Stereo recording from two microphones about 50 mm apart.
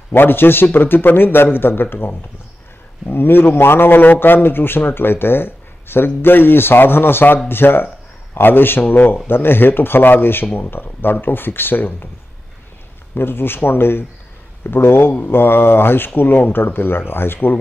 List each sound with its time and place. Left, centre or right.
0.1 s a man's voice: left
3.1 s a man's voice: left
13.1 s a man's voice: left